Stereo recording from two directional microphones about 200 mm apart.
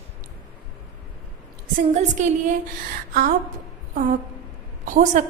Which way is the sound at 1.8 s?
35° right (ahead or behind).